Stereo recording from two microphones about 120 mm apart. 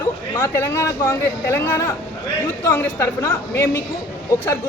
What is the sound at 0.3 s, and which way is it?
A man's voice, 20° left (ahead or behind).